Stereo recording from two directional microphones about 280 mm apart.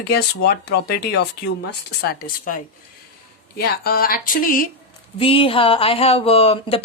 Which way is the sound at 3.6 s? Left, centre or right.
Left.